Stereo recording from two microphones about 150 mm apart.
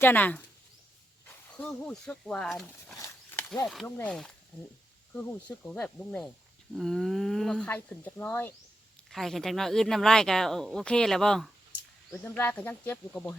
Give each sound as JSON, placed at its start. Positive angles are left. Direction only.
{"t": 0.0, "sound": "speech", "side_deg": 10}
{"t": 1.5, "sound": "speech", "side_deg": 10}
{"t": 3.8, "sound": "speech", "side_deg": 15}
{"t": 5.1, "sound": "speech", "side_deg": 10}
{"t": 9.0, "sound": "speech", "side_deg": 0}
{"t": 12.1, "sound": "speech", "side_deg": 15}